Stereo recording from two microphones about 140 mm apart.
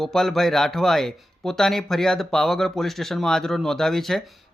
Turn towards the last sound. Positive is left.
turn(degrees=0)  # may be behind; listen again after turning